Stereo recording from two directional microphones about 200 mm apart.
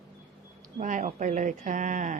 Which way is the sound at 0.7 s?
40° right (ahead or behind).